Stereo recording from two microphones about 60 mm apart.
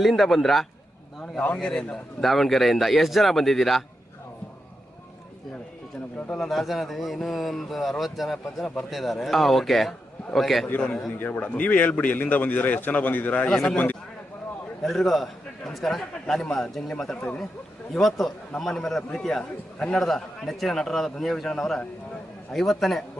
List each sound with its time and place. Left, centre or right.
0.0 s a man's voice: centre
1.2 s speech: left
1.6 s a man's voice: centre
6.5 s a man's voice: centre
10.7 s a man's voice: left
14.8 s a man's voice: centre